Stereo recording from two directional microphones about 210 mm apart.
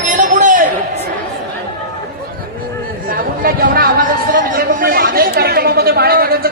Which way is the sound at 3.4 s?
45° right (ahead or behind).